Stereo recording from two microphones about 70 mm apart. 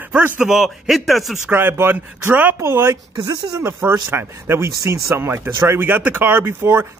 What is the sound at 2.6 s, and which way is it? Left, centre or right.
Speech, right.